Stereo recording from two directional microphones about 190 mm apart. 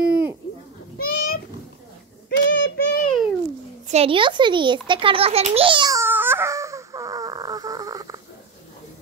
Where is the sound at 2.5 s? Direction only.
70° left (ahead or behind).